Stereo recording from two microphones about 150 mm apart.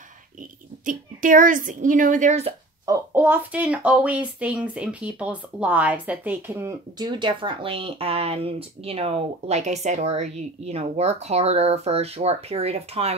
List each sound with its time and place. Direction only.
0.4 s speech: 60° right (ahead or behind)
2.8 s speech: 20° right (ahead or behind)
7.0 s speech: 35° right (ahead or behind)